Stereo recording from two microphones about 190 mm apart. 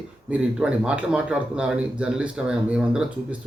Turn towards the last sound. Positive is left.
turn(degrees=-5)  # may be behind; listen again after turning